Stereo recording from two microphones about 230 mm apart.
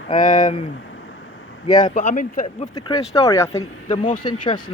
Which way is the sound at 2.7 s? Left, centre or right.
Centre.